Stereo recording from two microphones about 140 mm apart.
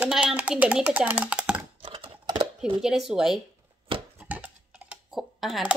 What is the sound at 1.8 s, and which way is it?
Computer keyboard, 40° right (ahead or behind).